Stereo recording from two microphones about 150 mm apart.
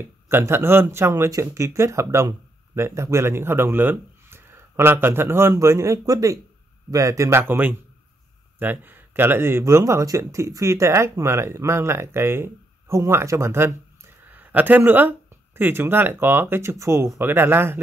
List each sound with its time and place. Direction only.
0.3 s speech: 15° right (ahead or behind)